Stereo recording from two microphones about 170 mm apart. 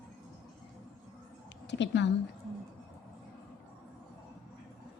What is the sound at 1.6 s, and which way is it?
Speech, 90° left.